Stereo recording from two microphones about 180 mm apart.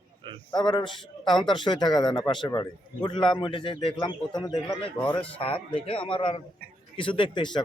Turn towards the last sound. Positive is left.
turn(degrees=25)  # may be behind; listen again after turning